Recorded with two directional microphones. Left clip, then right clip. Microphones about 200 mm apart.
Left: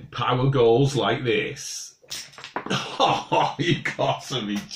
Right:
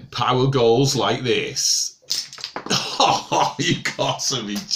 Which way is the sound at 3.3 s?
45° right (ahead or behind).